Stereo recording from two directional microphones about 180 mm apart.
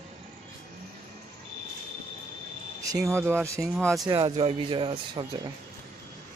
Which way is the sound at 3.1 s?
10° right (ahead or behind).